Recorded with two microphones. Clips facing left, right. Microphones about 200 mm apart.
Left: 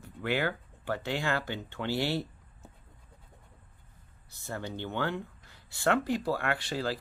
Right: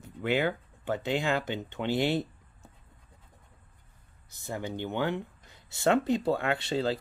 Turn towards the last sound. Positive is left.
turn(degrees=-25)  # may be behind; listen again after turning